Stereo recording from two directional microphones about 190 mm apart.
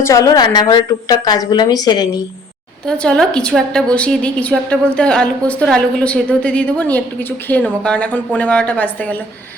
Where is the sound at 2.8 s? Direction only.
5° left (ahead or behind).